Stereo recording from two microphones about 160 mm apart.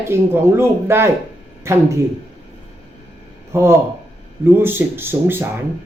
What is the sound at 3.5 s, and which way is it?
Speech, 15° right (ahead or behind).